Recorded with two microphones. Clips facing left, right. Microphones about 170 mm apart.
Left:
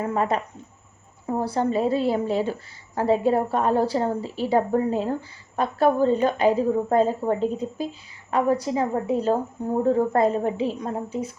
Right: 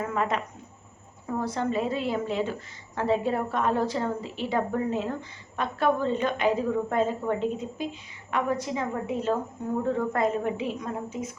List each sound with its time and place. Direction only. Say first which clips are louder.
0.0 s a woman's voice: left 4 dB; 35° left (ahead or behind)